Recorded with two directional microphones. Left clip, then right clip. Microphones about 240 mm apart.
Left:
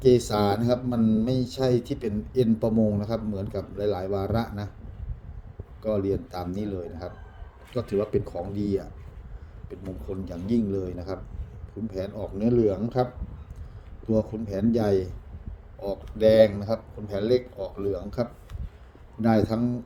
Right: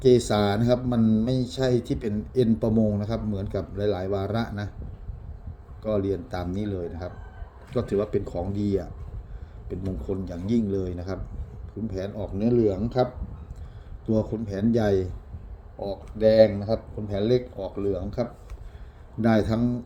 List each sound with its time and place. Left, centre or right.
0.0 s speech: centre
5.8 s speech: centre
14.1 s speech: centre
15.8 s speech: centre
19.2 s speech: centre